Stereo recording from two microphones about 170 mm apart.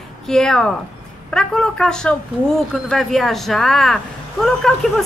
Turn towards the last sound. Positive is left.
turn(degrees=0)  # may be behind; listen again after turning